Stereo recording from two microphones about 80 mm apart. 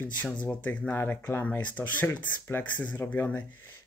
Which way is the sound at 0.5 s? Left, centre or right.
Centre.